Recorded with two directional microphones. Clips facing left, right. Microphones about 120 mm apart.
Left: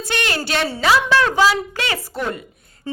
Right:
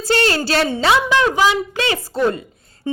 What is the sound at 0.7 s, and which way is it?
Speech, 20° right (ahead or behind).